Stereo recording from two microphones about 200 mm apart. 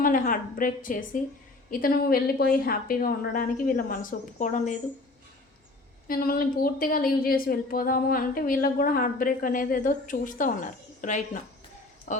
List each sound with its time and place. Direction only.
0.0 s a woman's voice: 45° left (ahead or behind)
6.1 s a woman's voice: 45° left (ahead or behind)